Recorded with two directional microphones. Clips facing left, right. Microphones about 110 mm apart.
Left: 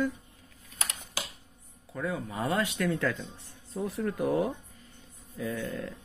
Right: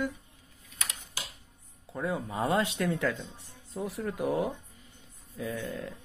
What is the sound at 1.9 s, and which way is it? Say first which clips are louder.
Speech: right 1 dB; 25° right (ahead or behind).